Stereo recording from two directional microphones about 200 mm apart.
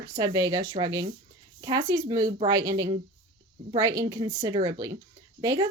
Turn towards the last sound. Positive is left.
turn(degrees=-15)  # may be behind; listen again after turning